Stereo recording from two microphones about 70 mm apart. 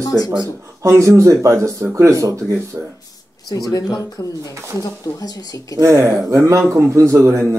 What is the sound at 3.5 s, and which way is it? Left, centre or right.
Speech, left.